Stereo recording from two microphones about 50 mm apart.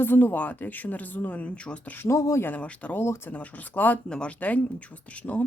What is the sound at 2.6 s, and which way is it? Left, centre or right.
Speech, left.